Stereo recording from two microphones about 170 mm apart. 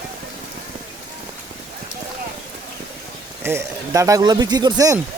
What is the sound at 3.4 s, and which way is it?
Speech, 15° right (ahead or behind).